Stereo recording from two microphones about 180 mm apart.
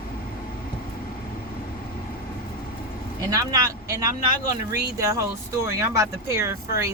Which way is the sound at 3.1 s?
20° right (ahead or behind).